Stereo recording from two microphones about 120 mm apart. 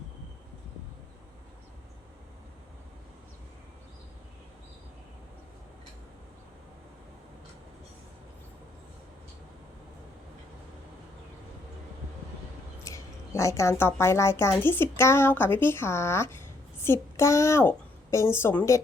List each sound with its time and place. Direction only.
12.8 s a woman's voice: 25° left (ahead or behind)